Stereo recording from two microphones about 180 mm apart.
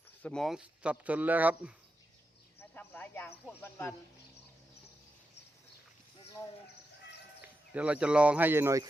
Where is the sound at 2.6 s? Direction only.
10° left (ahead or behind).